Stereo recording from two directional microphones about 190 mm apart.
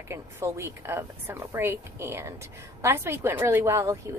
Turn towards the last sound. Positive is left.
turn(degrees=-15)  # may be behind; listen again after turning